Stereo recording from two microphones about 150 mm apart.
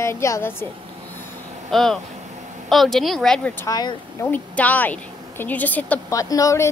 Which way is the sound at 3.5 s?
25° left (ahead or behind).